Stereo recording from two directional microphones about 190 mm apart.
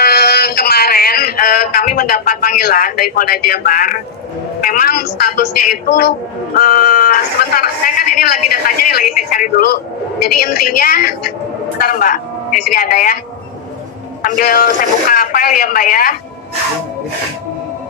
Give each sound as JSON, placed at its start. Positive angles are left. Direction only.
{"t": 0.0, "sound": "a sound", "side_deg": 55}
{"t": 4.6, "sound": "a woman's voice", "side_deg": 50}
{"t": 14.2, "sound": "speech", "side_deg": 50}